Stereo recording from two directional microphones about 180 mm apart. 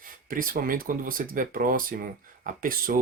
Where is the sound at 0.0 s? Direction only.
50° right (ahead or behind).